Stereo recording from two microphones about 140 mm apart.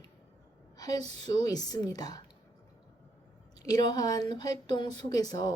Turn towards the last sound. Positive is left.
turn(degrees=30)  # may be behind; listen again after turning